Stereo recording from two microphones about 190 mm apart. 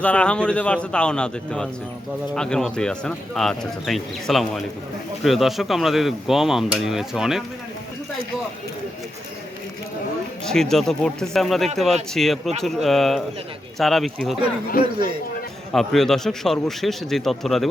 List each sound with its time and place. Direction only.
0.0 s speech: 5° left (ahead or behind)
10.4 s speech: centre (ahead or behind)
14.8 s a man's voice: 50° left (ahead or behind)
15.7 s speech: centre (ahead or behind)